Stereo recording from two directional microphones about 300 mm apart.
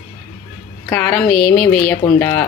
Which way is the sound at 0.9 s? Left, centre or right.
Centre.